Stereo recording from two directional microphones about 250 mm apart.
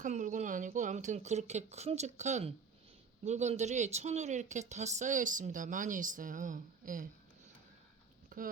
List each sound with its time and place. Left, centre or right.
0.0 s a woman's voice: right
8.3 s speech: right